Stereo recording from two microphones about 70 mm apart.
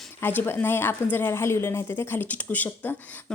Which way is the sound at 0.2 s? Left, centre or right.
Left.